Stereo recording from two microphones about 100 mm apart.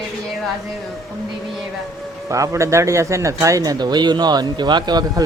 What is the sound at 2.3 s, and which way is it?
A man's voice, 30° right (ahead or behind).